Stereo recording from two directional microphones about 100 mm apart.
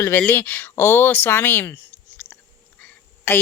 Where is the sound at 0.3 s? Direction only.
20° left (ahead or behind).